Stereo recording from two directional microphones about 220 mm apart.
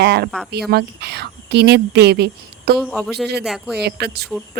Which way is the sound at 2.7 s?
Centre (ahead or behind).